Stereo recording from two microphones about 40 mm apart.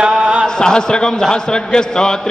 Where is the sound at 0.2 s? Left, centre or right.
Right.